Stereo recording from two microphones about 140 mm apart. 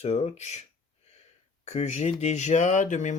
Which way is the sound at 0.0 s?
55° left (ahead or behind).